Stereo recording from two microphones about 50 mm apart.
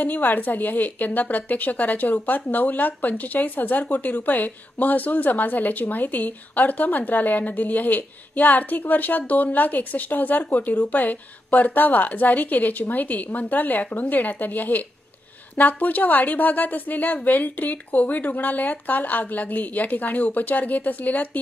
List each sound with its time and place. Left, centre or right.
0.0 s a woman's voice: left